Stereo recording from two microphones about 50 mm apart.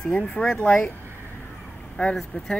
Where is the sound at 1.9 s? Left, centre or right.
Centre.